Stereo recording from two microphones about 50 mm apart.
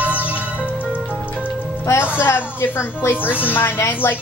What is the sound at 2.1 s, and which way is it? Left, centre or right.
A woman's voice, left.